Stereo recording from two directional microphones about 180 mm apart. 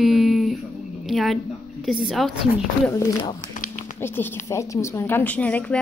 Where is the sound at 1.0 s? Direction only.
Centre (ahead or behind).